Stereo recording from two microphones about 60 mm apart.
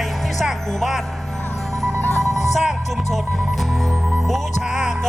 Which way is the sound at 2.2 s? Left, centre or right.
Centre.